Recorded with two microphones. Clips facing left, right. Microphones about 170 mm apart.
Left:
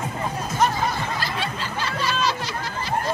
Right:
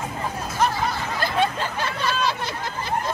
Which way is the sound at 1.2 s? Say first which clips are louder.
Right 6 dB; 55° right (ahead or behind).